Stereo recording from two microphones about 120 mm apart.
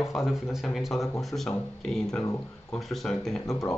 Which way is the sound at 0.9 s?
25° left (ahead or behind).